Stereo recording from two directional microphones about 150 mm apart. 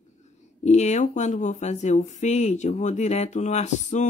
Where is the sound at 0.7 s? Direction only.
50° left (ahead or behind).